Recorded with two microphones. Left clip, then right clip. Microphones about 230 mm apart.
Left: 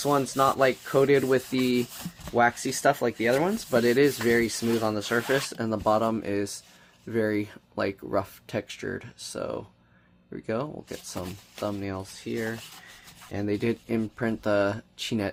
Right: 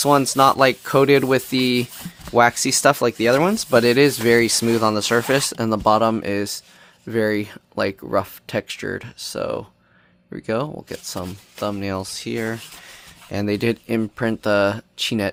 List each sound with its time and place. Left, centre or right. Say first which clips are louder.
0.0 s speech: right 8 dB; right